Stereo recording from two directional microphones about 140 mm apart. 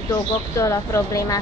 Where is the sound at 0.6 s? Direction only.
20° left (ahead or behind).